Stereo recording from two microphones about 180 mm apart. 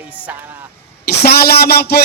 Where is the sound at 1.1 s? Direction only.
65° left (ahead or behind).